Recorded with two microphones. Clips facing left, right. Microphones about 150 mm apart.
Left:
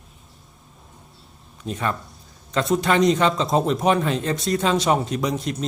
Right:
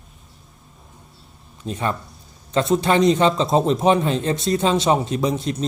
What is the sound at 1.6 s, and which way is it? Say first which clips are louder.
A man's voice: right 1 dB; 30° right (ahead or behind).